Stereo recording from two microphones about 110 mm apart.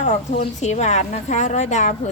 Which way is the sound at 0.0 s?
90° left.